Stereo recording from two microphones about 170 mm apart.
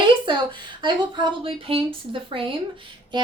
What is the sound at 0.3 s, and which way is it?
Speech, 30° right (ahead or behind).